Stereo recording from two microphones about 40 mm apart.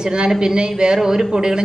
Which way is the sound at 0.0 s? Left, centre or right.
Centre.